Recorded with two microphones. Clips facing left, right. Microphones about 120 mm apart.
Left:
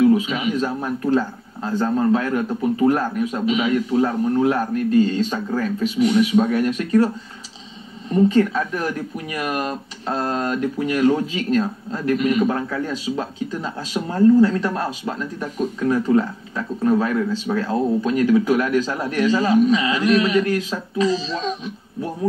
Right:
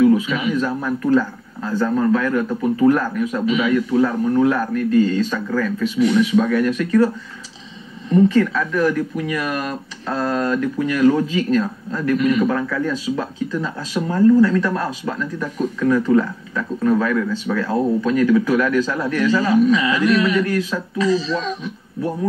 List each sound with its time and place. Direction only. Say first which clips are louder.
0.0 s speech: right 1 dB; 25° left (ahead or behind)
8.3 s speech: even; 25° left (ahead or behind)